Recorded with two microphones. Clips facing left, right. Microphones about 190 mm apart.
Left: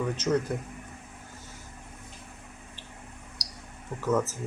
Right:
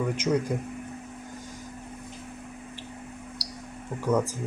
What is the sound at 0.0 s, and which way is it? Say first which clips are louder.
Speech: right 1 dB; 10° right (ahead or behind).